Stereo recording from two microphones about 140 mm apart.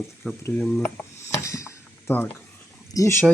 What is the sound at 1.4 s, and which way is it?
Dishes, 20° left (ahead or behind).